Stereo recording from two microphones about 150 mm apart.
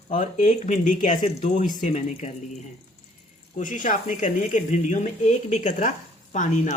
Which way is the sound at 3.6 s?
60° left (ahead or behind).